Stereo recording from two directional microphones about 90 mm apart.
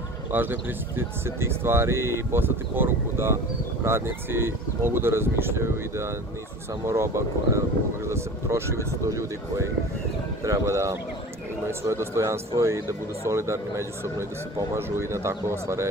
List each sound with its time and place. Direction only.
0.3 s speech: 20° right (ahead or behind)
10.4 s speech: 35° right (ahead or behind)